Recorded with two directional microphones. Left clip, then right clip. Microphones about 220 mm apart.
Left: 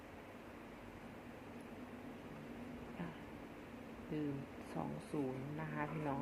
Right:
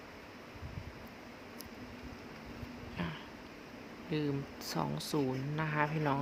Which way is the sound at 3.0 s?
35° right (ahead or behind).